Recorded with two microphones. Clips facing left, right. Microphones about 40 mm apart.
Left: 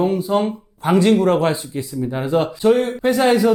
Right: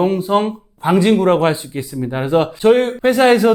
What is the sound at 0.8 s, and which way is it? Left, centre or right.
Speech, right.